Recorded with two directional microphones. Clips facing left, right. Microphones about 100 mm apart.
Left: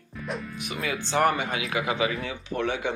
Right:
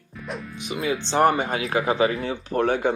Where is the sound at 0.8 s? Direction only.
30° right (ahead or behind).